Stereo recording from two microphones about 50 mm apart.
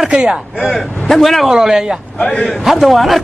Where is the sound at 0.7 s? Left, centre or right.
Centre.